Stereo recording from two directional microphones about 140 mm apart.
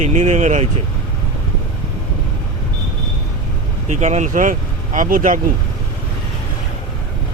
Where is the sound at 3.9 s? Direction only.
55° right (ahead or behind); by 5.4 s 70° right (ahead or behind).